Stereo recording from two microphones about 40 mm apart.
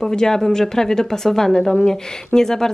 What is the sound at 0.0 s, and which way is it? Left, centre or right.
A woman's voice, centre.